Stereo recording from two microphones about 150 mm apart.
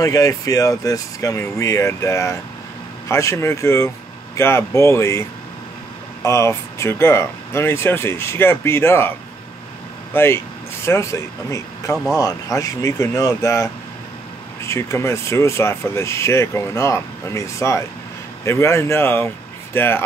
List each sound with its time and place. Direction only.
0.0 s speech: 20° left (ahead or behind)
6.2 s speech: 20° left (ahead or behind)
10.1 s speech: 15° left (ahead or behind)